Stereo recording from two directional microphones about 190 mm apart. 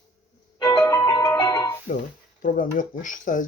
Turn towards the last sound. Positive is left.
turn(degrees=45)  # may be behind; listen again after turning